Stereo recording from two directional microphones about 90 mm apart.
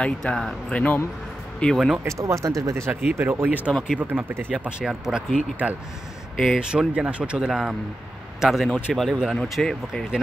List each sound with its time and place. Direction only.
0.0 s speech: 10° left (ahead or behind)
0.7 s speech: 15° left (ahead or behind)
2.0 s speech: 35° right (ahead or behind)
2.9 s speech: 15° right (ahead or behind)
3.2 s speech: 25° right (ahead or behind)
3.4 s speech: 15° right (ahead or behind)
4.6 s speech: 10° right (ahead or behind)
6.3 s speech: centre (ahead or behind)